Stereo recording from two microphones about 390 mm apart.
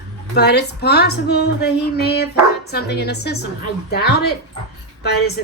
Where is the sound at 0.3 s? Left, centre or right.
Left.